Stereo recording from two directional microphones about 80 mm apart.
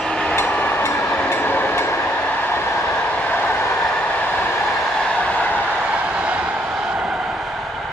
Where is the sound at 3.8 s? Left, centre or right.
Centre.